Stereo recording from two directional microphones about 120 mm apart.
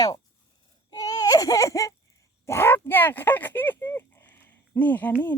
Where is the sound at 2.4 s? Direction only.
20° left (ahead or behind).